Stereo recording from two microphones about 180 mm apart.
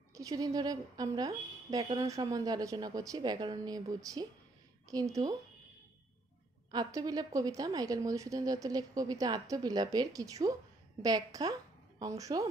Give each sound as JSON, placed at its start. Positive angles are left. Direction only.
{"t": 0.1, "sound": "a woman's voice", "side_deg": -20}
{"t": 6.7, "sound": "a woman's voice", "side_deg": -20}